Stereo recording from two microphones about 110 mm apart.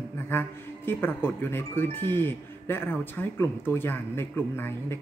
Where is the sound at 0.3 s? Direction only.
20° left (ahead or behind).